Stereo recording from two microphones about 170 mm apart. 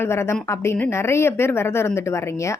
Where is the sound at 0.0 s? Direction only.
15° left (ahead or behind).